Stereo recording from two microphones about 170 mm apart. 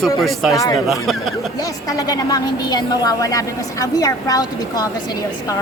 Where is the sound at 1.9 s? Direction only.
20° left (ahead or behind).